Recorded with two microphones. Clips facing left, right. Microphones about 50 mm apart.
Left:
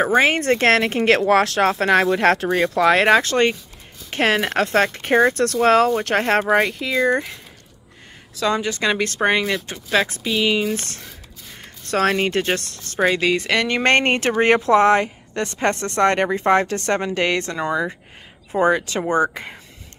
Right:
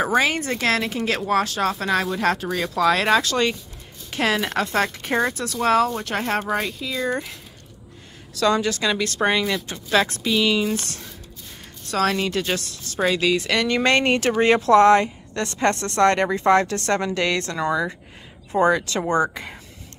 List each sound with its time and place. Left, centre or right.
0.0 s speech: left
0.4 s speech: left
1.6 s speech: left
2.7 s speech: left
5.4 s speech: left
8.4 s speech: left
9.8 s speech: centre
10.7 s speech: left